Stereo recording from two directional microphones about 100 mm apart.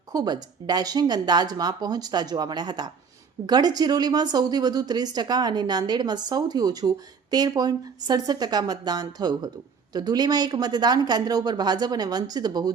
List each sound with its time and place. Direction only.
0.1 s a woman's voice: 40° right (ahead or behind)